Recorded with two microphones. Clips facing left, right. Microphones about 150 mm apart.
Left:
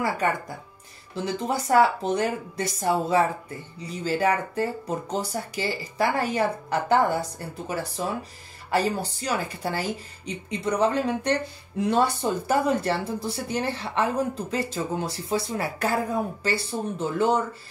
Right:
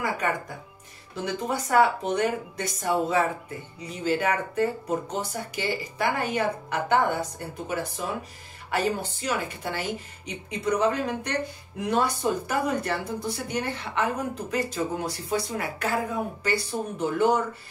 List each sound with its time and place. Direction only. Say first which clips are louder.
1.1 s speech: left 2 dB; 30° left (ahead or behind)